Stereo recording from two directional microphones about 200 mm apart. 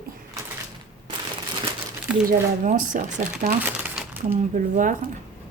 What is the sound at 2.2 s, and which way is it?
Speech, 40° right (ahead or behind).